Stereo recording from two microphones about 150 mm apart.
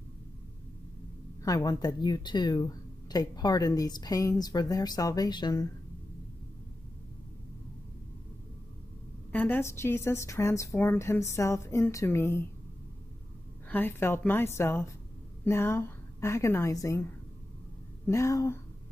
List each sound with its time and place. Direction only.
1.4 s a woman's voice: 25° left (ahead or behind)
9.3 s a woman's voice: 10° left (ahead or behind)
13.7 s a woman's voice: 15° left (ahead or behind)
18.0 s a woman's voice: 20° left (ahead or behind)